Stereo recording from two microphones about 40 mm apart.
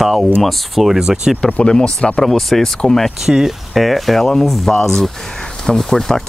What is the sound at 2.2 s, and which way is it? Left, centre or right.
Speech, centre.